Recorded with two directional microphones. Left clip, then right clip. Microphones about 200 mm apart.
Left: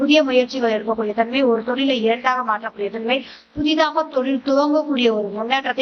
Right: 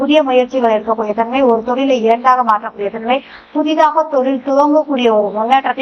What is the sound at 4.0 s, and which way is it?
A woman's voice, 25° left (ahead or behind).